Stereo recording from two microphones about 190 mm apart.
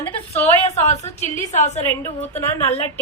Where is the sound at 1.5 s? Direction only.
40° left (ahead or behind).